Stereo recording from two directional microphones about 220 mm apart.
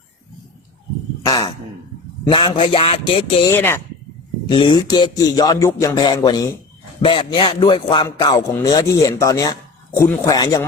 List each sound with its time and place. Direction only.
1.2 s a man's voice: 15° left (ahead or behind)
3.5 s speech: 10° left (ahead or behind)
4.4 s a man's voice: 20° left (ahead or behind)